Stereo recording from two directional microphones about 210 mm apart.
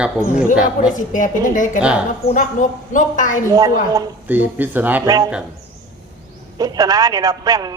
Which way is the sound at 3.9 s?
10° right (ahead or behind).